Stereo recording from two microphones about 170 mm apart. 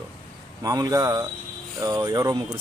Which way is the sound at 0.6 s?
20° right (ahead or behind).